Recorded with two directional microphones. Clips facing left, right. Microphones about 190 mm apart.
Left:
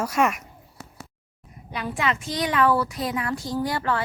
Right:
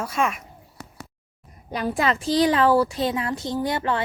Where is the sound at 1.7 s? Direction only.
40° right (ahead or behind); by 4.0 s 20° right (ahead or behind).